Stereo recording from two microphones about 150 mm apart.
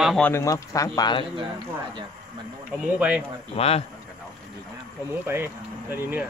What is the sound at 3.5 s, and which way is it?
Speech, 40° left (ahead or behind).